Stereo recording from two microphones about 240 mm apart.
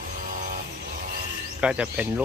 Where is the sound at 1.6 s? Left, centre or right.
Centre.